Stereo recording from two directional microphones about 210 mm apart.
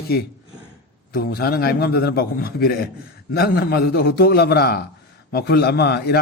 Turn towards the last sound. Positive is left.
turn(degrees=50)  # may be behind; listen again after turning